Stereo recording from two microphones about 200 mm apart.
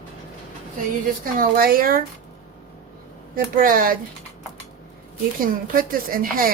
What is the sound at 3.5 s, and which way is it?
Speech, 45° right (ahead or behind).